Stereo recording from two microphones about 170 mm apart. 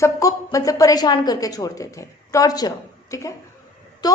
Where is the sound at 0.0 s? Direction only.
20° left (ahead or behind).